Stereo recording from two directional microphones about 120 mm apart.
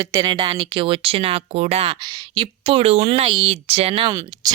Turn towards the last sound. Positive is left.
turn(degrees=-30)  # may be behind; listen again after turning